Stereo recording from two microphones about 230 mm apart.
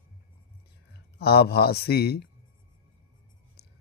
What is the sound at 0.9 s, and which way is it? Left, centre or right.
Speech, left.